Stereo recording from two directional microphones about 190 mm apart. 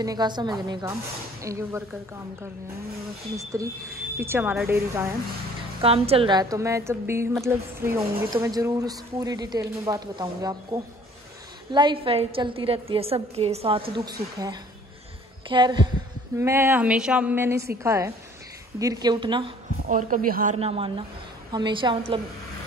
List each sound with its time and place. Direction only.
0.0 s a woman's voice: 20° right (ahead or behind)
3.3 s speech: 15° right (ahead or behind)
5.8 s a woman's voice: 30° right (ahead or behind)
15.4 s a woman's voice: 25° right (ahead or behind)
16.3 s a woman's voice: 15° right (ahead or behind)
19.9 s a woman's voice: 45° right (ahead or behind)
20.5 s a man's voice: 30° right (ahead or behind)